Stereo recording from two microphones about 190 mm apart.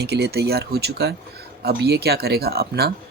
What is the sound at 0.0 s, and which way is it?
Speech, 60° right (ahead or behind).